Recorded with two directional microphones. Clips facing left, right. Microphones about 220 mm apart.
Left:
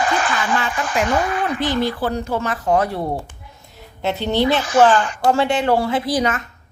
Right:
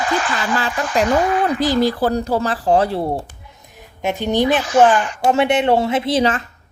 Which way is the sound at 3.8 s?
15° right (ahead or behind).